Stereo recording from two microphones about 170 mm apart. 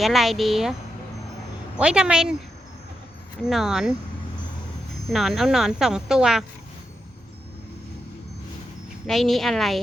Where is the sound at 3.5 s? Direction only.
Centre (ahead or behind).